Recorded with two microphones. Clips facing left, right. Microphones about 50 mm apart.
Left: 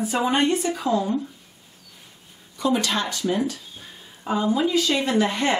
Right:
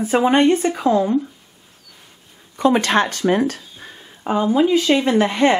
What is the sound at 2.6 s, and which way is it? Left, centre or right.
Speech, right.